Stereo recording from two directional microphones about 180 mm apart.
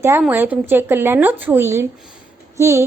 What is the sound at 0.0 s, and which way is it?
A woman's voice, 10° right (ahead or behind).